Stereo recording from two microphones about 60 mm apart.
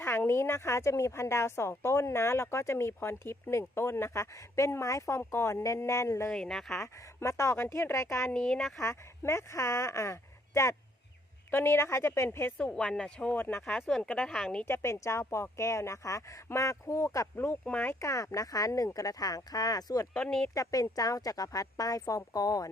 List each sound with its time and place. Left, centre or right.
0.0 s a woman's voice: left
6.3 s speech: centre
6.8 s a woman's voice: left
8.3 s speech: centre
8.8 s speech: left
11.5 s a woman's voice: left
12.5 s speech: centre
13.3 s speech: left
13.6 s speech: centre
14.6 s a woman's voice: left
17.3 s a woman's voice: left
18.0 s speech: left
20.5 s speech: left
20.9 s speech: left